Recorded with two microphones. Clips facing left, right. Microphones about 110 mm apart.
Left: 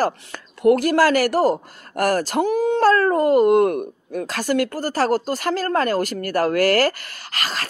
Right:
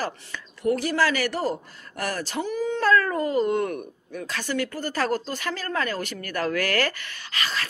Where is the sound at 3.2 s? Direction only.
65° left (ahead or behind).